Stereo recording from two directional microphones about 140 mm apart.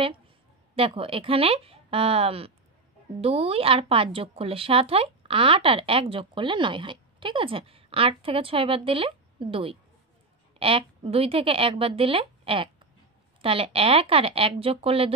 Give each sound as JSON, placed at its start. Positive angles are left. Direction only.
{"t": 0.7, "sound": "speech", "side_deg": -40}